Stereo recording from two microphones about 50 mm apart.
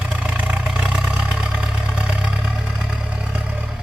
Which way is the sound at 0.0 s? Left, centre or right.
Centre.